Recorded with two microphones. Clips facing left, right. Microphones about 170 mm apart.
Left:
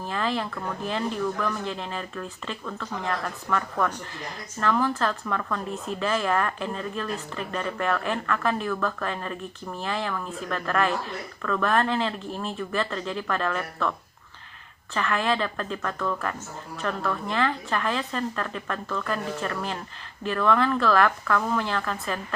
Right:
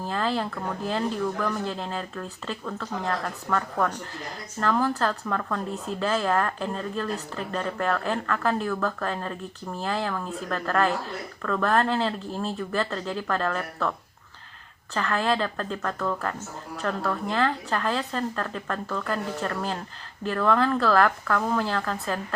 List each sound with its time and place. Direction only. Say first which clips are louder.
0.1 s a sound: right 1 dB; 35° right (ahead or behind)
0.9 s a woman's voice: right 1 dB; 35° right (ahead or behind)
14.9 s a woman's voice: even; 35° right (ahead or behind)